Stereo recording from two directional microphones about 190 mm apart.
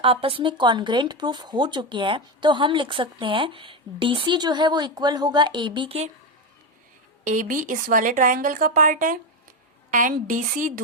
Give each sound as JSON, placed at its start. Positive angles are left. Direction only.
{"t": 0.0, "sound": "speech", "side_deg": -30}
{"t": 7.3, "sound": "speech", "side_deg": -45}